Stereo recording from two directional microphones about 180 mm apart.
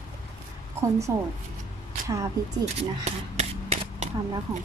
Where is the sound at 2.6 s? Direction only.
35° right (ahead or behind).